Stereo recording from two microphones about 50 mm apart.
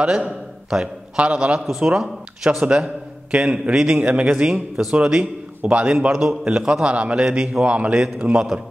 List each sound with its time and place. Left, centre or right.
0.0 s a man's voice: centre
0.7 s a man's voice: centre
1.1 s a man's voice: right
2.6 s a man's voice: right